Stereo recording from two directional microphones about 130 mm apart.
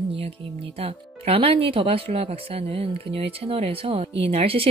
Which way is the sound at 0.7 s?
50° right (ahead or behind).